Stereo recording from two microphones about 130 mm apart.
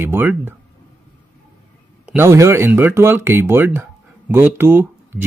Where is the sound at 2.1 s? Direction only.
20° right (ahead or behind).